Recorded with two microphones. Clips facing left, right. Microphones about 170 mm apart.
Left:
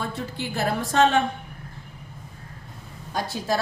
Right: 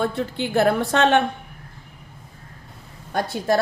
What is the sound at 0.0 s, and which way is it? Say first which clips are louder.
A woman's voice: right 7 dB; 60° right (ahead or behind).